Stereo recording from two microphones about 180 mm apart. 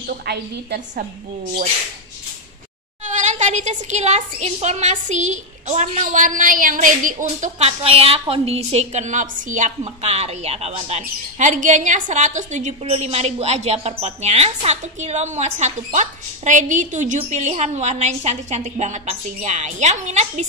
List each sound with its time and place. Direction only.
0.0 s a woman's voice: 60° right (ahead or behind)
3.1 s a woman's voice: 40° right (ahead or behind)